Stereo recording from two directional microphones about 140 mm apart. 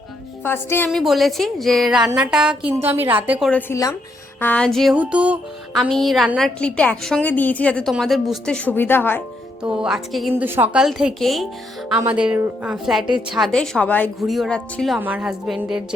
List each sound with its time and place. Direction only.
0.4 s a woman's voice: 15° left (ahead or behind)
0.9 s a woman's voice: centre (ahead or behind)
4.4 s a woman's voice: 10° left (ahead or behind)
4.9 s a woman's voice: 10° right (ahead or behind)
5.7 s a woman's voice: centre (ahead or behind)
9.8 s a woman's voice: centre (ahead or behind)
10.4 s a woman's voice: 15° right (ahead or behind)
11.9 s a woman's voice: 10° right (ahead or behind); by 14.1 s 10° left (ahead or behind)
14.3 s a woman's voice: centre (ahead or behind)
14.9 s a woman's voice: 10° right (ahead or behind)